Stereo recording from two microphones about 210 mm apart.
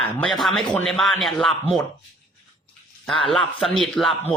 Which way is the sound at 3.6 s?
Centre (ahead or behind).